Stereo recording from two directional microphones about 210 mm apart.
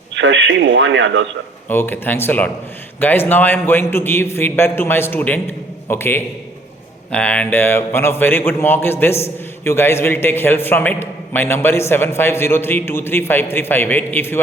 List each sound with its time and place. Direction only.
0.1 s speech: 60° right (ahead or behind)
1.6 s a man's voice: 10° left (ahead or behind)